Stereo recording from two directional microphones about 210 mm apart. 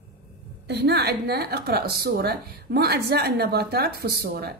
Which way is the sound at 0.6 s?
50° right (ahead or behind).